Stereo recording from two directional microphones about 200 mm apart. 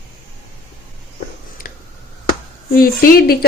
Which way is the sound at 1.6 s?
45° left (ahead or behind).